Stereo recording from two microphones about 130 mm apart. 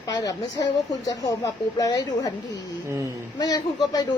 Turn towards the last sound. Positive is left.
turn(degrees=30)  # may be behind; listen again after turning